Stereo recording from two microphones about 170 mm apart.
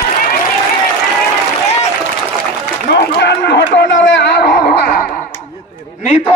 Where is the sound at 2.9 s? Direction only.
80° left.